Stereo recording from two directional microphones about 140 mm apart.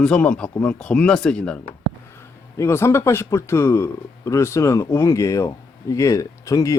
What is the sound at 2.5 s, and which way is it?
Speech, 20° left (ahead or behind).